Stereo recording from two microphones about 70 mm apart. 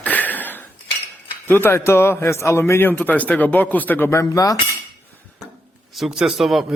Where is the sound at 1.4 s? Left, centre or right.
Left.